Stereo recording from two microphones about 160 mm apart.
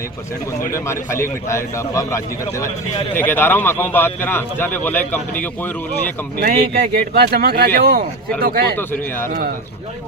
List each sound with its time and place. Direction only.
0.7 s a man's voice: 15° left (ahead or behind)
6.4 s speech: 65° right (ahead or behind)
8.7 s a man's voice: 15° left (ahead or behind)